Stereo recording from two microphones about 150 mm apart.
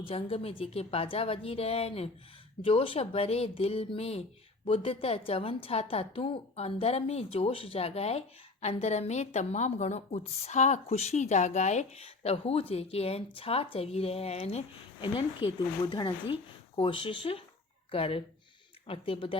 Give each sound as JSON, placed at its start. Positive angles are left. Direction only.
{"t": 0.0, "sound": "a woman's voice", "side_deg": 40}